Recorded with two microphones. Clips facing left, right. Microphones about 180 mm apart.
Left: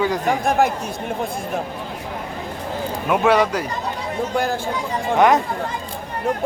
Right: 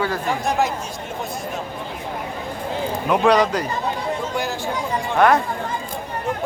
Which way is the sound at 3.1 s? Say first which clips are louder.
Even; 5° left (ahead or behind).